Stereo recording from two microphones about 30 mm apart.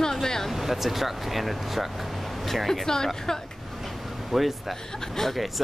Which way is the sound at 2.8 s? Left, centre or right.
Centre.